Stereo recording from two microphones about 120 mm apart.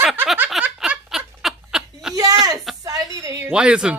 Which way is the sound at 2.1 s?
30° right (ahead or behind).